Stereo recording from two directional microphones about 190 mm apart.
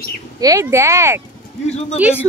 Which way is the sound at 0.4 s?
15° right (ahead or behind).